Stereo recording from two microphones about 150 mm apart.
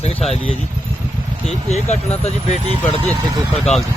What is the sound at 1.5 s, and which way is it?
Speech, 45° left (ahead or behind).